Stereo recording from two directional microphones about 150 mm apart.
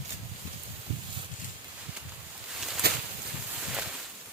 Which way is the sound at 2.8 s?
90° right.